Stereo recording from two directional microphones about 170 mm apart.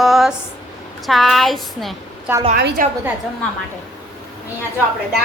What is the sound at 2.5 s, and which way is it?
Speech, 65° right (ahead or behind).